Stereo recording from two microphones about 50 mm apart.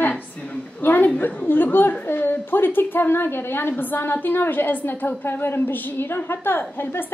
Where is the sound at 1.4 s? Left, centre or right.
Left.